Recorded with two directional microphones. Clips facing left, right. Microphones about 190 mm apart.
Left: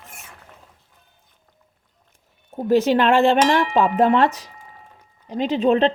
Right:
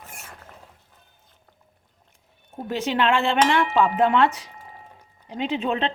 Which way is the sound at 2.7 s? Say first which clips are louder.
Left 6 dB; 40° left (ahead or behind).